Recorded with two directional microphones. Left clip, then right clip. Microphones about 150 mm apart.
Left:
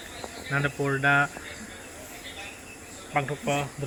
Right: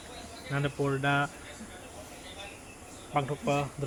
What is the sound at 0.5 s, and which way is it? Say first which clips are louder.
Speech: left 4 dB; 5° right (ahead or behind).